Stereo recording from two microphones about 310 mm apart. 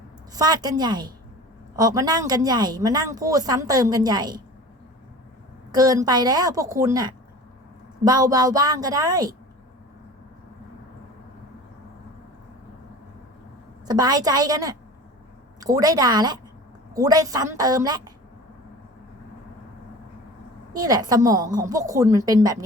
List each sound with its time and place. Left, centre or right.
0.3 s speech: centre
5.7 s speech: centre
13.8 s speech: centre
20.7 s speech: centre